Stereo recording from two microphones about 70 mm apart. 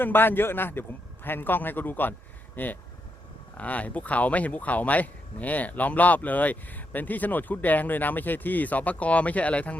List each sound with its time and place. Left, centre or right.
0.0 s speech: left